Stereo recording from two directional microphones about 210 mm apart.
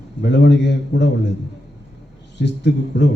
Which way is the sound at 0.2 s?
55° left (ahead or behind).